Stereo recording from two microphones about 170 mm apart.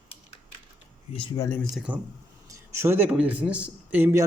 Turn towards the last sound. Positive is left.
turn(degrees=-10)  # may be behind; listen again after turning